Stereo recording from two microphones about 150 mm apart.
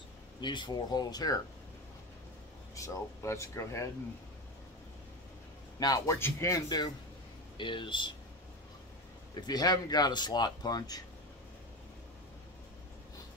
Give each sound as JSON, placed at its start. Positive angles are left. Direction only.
{"t": 0.4, "sound": "speech", "side_deg": 30}
{"t": 2.7, "sound": "speech", "side_deg": 20}
{"t": 5.8, "sound": "speech", "side_deg": 25}
{"t": 9.3, "sound": "speech", "side_deg": 25}